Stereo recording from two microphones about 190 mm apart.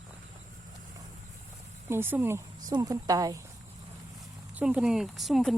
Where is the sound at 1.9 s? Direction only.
10° right (ahead or behind).